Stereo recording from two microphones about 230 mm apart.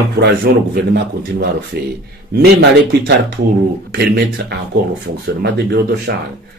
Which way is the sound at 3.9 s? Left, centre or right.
Right.